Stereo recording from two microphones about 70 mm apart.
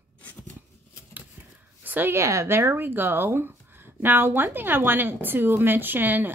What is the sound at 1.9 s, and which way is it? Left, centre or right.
Speech, right.